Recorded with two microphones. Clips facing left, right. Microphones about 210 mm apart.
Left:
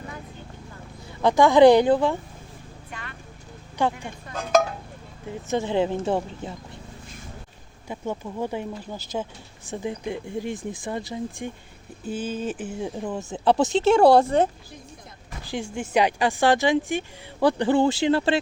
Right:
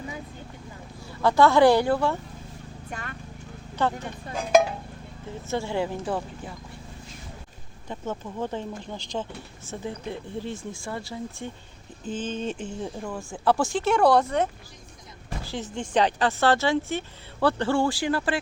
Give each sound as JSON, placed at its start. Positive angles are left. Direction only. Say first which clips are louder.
{"t": 1.2, "sound": "speech", "louder": "left 3 dB", "side_deg": 15}
{"t": 2.9, "sound": "vehicle", "louder": "right 3 dB", "side_deg": -45}
{"t": 3.8, "sound": "speech", "louder": "left 2 dB", "side_deg": 15}
{"t": 5.5, "sound": "speech", "louder": "left 4 dB", "side_deg": 20}
{"t": 7.9, "sound": "speech", "louder": "left 2 dB", "side_deg": 10}
{"t": 13.0, "sound": "speech", "louder": "left 4 dB", "side_deg": 20}
{"t": 15.4, "sound": "speech", "louder": "left 4 dB", "side_deg": 15}